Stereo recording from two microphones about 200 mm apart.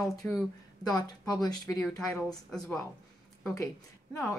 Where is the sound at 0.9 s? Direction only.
20° left (ahead or behind).